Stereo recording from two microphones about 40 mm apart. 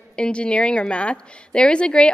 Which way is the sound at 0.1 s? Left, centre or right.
Left.